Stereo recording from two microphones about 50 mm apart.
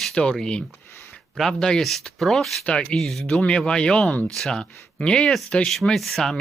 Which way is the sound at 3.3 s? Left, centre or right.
Centre.